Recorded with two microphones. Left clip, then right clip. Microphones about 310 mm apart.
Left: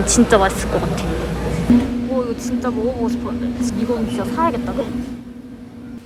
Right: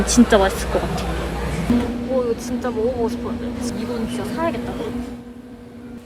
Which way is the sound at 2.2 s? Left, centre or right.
Centre.